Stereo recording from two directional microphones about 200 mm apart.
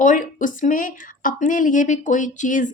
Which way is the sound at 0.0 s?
40° left (ahead or behind).